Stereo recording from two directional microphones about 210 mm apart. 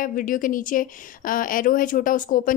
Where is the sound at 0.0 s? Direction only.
40° left (ahead or behind).